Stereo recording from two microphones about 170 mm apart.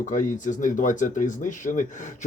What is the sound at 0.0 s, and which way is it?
Speech, 45° left (ahead or behind).